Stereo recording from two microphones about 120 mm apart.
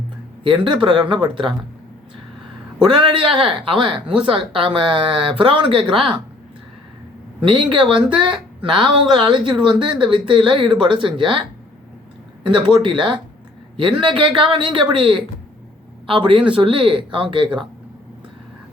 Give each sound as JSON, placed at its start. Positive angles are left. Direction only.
{"t": 0.4, "sound": "speech", "side_deg": -45}
{"t": 2.8, "sound": "speech", "side_deg": -45}
{"t": 7.4, "sound": "speech", "side_deg": -45}